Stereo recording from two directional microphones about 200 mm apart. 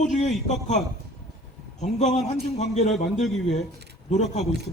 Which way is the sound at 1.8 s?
35° left (ahead or behind).